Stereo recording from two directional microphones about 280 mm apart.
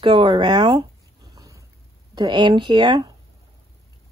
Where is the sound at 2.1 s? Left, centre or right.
Centre.